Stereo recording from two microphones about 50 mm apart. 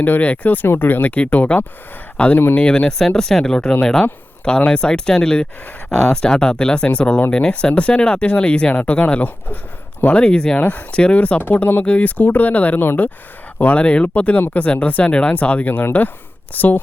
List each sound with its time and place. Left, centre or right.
0.0 s speech: left
3.2 s speech: centre
10.6 s speech: left
10.9 s speech: left
12.8 s speech: left
13.6 s speech: left